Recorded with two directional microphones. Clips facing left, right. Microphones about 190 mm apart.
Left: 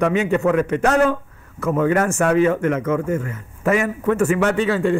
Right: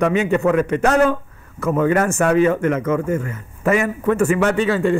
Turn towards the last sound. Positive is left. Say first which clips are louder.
# right 1 dB
turn(degrees=-15)  # may be behind; listen again after turning